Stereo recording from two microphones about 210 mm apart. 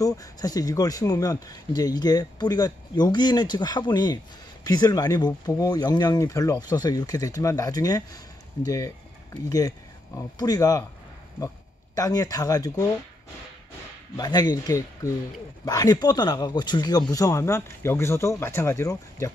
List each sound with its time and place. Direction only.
0.0 s speech: 15° left (ahead or behind)
14.1 s speech: 20° left (ahead or behind)